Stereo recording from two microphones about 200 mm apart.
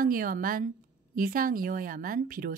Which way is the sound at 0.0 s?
45° right (ahead or behind).